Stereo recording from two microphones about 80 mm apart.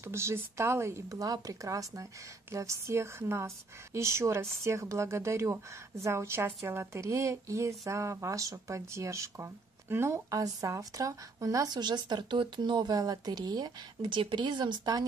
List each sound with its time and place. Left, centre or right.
0.0 s a woman's voice: right
12.9 s speech: right